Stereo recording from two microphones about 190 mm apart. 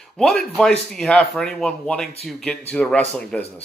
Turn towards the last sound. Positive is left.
turn(degrees=5)  # may be behind; listen again after turning